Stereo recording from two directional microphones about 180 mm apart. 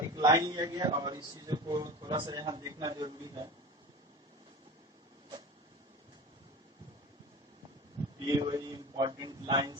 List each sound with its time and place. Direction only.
0.1 s a man's voice: 20° right (ahead or behind)
8.3 s a man's voice: 20° right (ahead or behind)